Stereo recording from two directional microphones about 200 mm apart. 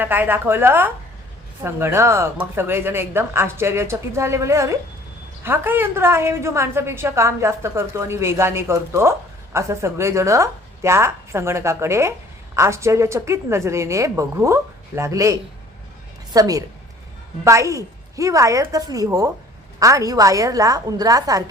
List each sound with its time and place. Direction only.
0.0 s a woman's voice: 10° right (ahead or behind)